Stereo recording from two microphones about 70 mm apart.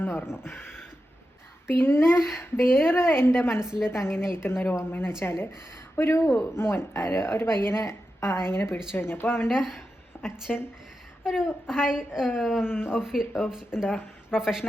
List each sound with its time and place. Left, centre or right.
0.0 s a woman's voice: left
9.5 s speech: centre
10.5 s a woman's voice: centre
11.2 s a woman's voice: centre
12.6 s a woman's voice: left
12.9 s a woman's voice: centre